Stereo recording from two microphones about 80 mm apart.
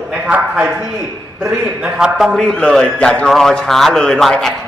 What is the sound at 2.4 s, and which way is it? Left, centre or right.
A man's voice, centre.